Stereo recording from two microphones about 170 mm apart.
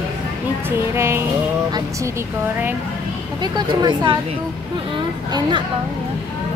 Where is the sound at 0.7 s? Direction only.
15° right (ahead or behind).